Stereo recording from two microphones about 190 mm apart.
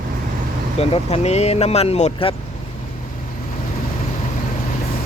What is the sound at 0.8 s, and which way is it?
Speech, 35° left (ahead or behind).